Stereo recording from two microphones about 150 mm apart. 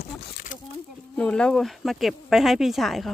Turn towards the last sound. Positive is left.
turn(degrees=0)  # may be behind; listen again after turning